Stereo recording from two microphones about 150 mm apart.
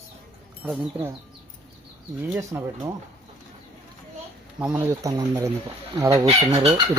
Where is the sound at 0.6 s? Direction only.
15° right (ahead or behind).